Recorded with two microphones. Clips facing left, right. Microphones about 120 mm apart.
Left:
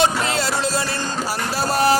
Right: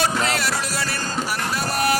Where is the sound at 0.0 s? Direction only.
25° left (ahead or behind).